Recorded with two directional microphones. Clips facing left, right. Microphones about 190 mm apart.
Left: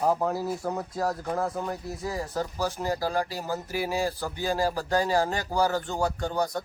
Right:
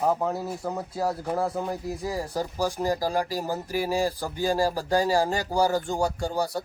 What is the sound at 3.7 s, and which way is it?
Speech, 35° right (ahead or behind).